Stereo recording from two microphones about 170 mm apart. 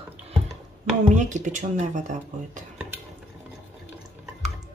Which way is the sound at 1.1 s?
45° right (ahead or behind).